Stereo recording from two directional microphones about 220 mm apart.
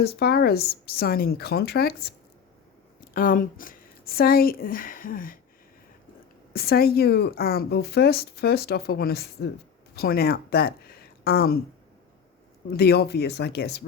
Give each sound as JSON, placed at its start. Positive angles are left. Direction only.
{"t": 0.0, "sound": "a woman's voice", "side_deg": 45}
{"t": 6.5, "sound": "a woman's voice", "side_deg": 45}
{"t": 12.7, "sound": "a woman's voice", "side_deg": 45}